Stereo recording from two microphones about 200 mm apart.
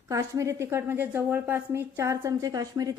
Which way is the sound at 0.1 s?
15° right (ahead or behind).